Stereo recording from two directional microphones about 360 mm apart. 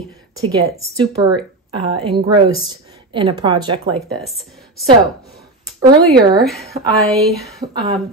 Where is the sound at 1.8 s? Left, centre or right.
Centre.